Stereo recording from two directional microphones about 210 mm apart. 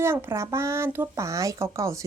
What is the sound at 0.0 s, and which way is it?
Speech, 10° right (ahead or behind).